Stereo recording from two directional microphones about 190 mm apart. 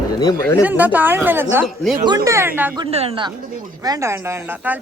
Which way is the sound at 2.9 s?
30° right (ahead or behind).